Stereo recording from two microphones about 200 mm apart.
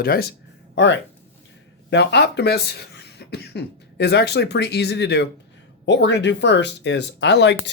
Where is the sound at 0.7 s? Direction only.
60° left (ahead or behind).